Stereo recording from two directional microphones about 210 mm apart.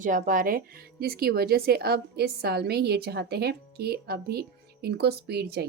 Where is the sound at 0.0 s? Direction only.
40° right (ahead or behind).